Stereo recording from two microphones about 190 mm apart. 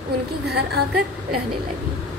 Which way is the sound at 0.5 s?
60° right (ahead or behind).